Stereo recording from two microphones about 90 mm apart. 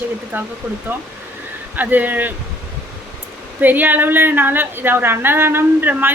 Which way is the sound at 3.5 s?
20° right (ahead or behind).